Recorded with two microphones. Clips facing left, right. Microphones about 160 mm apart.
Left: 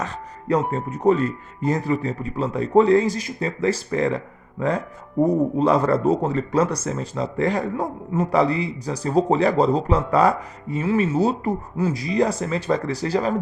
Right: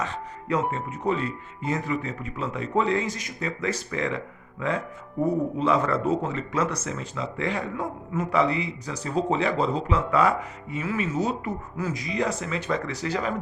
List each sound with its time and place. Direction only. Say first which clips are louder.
0.0 s music: left 1 dB; 35° left (ahead or behind)
0.7 s speech: left 8 dB; 40° left (ahead or behind)